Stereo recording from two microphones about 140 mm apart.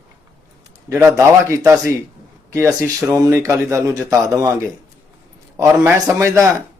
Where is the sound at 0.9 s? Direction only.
20° right (ahead or behind).